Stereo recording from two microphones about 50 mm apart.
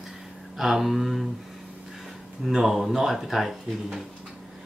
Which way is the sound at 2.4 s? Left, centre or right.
Centre.